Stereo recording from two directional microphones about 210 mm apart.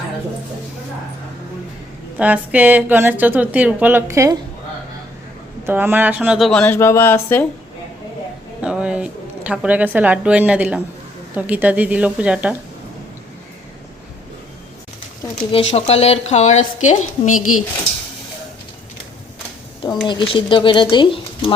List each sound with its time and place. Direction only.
2.1 s speech: 5° right (ahead or behind)
5.6 s speech: 10° right (ahead or behind); by 7.4 s 10° left (ahead or behind)
8.6 s speech: 5° right (ahead or behind)
15.5 s a woman's voice: 30° left (ahead or behind)
17.3 s speech: 90° left
20.1 s speech: 25° left (ahead or behind)